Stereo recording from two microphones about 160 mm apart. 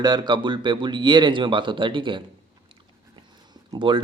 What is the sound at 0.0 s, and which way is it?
Speech, 25° right (ahead or behind).